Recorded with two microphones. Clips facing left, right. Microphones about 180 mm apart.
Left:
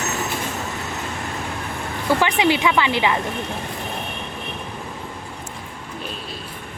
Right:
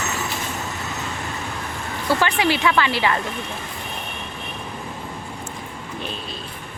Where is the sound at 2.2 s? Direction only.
20° left (ahead or behind).